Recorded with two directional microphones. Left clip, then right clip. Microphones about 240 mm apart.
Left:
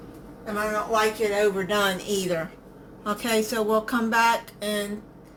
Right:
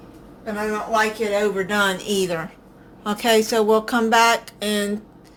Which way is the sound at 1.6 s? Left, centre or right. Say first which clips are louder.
Right 3 dB; centre.